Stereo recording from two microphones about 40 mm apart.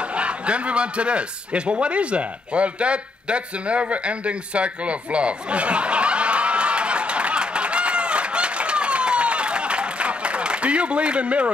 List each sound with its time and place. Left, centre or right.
0.1 s chuckle: right